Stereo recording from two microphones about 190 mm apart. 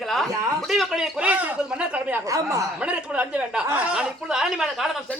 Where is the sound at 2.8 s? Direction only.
5° right (ahead or behind).